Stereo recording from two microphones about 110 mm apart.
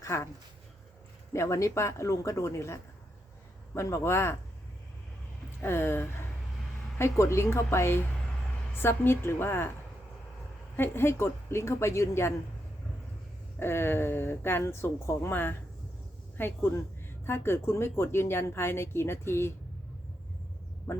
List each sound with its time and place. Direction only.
0.0 s speech: 25° left (ahead or behind)
1.3 s a woman's voice: 25° left (ahead or behind)
3.8 s a woman's voice: 25° left (ahead or behind)
5.5 s a woman's voice: 20° left (ahead or behind)
10.8 s a woman's voice: 20° left (ahead or behind)
13.6 s a woman's voice: 20° left (ahead or behind)
20.9 s speech: 20° left (ahead or behind)